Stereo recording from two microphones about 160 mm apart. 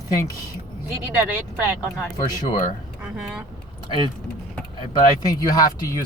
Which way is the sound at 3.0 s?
5° right (ahead or behind).